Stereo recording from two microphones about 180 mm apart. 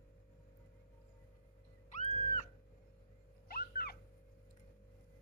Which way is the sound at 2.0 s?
35° left (ahead or behind).